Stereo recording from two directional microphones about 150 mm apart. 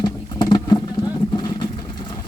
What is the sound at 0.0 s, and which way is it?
Vehicle, 30° left (ahead or behind).